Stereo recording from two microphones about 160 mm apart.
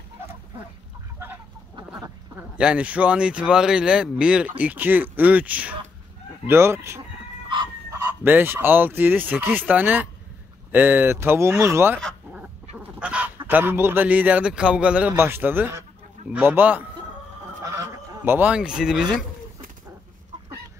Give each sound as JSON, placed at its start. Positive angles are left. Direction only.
{"t": 2.5, "sound": "a man's voice", "side_deg": -5}
{"t": 8.2, "sound": "a man's voice", "side_deg": -10}
{"t": 12.7, "sound": "chicken", "side_deg": -10}
{"t": 13.5, "sound": "a man's voice", "side_deg": -15}
{"t": 17.6, "sound": "goose", "side_deg": -15}